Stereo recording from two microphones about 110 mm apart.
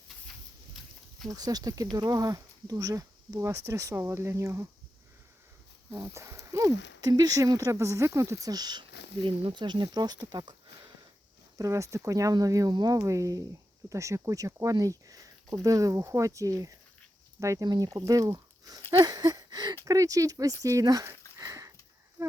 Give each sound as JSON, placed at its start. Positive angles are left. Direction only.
{"t": 1.3, "sound": "speech", "side_deg": -35}
{"t": 5.9, "sound": "speech", "side_deg": -30}
{"t": 11.5, "sound": "speech", "side_deg": -30}
{"t": 21.3, "sound": "sniff", "side_deg": -30}
{"t": 22.2, "sound": "speech", "side_deg": -25}